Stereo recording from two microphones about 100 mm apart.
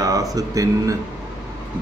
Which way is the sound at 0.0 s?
35° right (ahead or behind).